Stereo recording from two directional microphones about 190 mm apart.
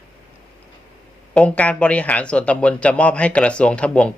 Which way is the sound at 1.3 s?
5° left (ahead or behind).